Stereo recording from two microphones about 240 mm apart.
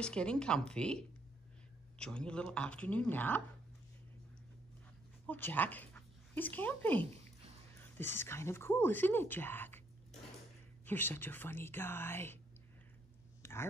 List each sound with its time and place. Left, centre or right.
0.0 s speech: centre
5.2 s speech: centre
10.9 s speech: centre
13.4 s a sound: centre